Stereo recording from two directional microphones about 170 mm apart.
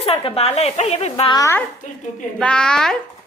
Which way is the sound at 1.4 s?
15° left (ahead or behind).